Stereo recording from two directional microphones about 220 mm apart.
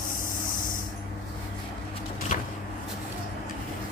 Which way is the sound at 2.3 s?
35° left (ahead or behind).